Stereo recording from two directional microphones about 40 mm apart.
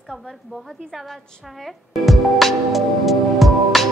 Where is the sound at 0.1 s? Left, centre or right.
Centre.